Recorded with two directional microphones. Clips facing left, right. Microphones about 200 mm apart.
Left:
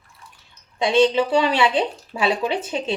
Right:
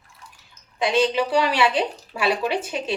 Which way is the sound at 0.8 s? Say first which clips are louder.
Left 3 dB; 25° left (ahead or behind).